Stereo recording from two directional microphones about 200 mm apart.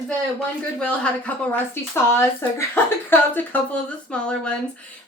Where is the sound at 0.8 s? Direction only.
5° left (ahead or behind).